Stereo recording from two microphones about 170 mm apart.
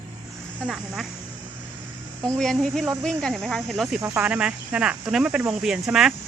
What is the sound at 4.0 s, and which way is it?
Speech, 10° right (ahead or behind).